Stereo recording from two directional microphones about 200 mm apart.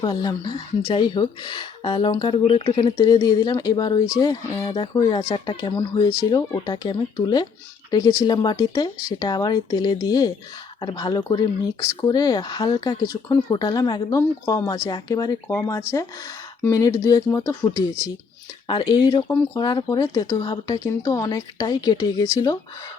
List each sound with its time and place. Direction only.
0.0 s speech: 20° left (ahead or behind)